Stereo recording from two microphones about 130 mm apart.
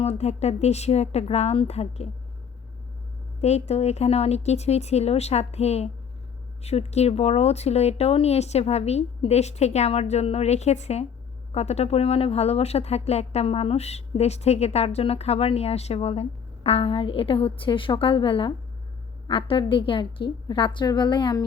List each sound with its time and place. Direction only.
0.0 s speech: 55° left (ahead or behind)
3.4 s a woman's voice: 55° left (ahead or behind); by 21.4 s 35° left (ahead or behind)